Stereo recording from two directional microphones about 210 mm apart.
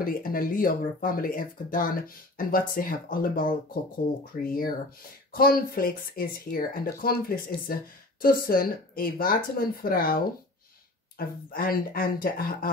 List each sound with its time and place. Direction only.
0.0 s speech: 45° left (ahead or behind)